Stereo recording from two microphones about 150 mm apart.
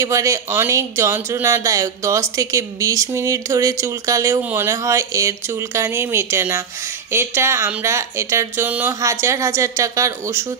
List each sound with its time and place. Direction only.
0.0 s speech: 20° right (ahead or behind)